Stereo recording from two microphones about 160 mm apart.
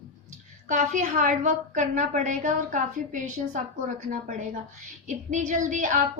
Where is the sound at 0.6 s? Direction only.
50° right (ahead or behind).